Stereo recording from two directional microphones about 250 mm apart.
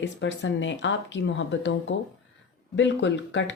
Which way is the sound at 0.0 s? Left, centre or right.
Left.